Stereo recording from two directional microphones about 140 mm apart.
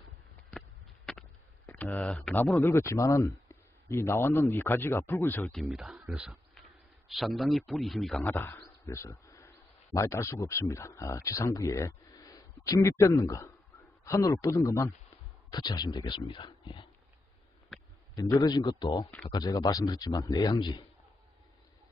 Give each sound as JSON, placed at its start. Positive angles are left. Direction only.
{"t": 0.5, "sound": "a sound", "side_deg": 5}
{"t": 1.7, "sound": "speech", "side_deg": 10}
{"t": 5.5, "sound": "speech", "side_deg": 0}
{"t": 8.2, "sound": "speech", "side_deg": 15}
{"t": 18.1, "sound": "speech", "side_deg": 25}